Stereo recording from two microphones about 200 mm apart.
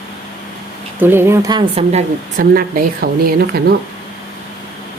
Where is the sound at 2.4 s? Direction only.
45° right (ahead or behind).